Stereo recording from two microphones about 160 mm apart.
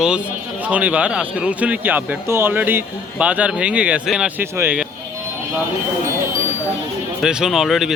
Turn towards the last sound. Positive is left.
turn(degrees=0)  # may be behind; listen again after turning